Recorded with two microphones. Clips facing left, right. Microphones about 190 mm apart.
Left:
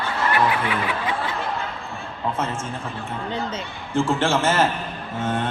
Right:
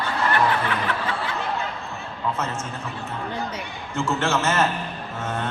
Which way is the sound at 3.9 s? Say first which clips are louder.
Left 3 dB; 30° left (ahead or behind).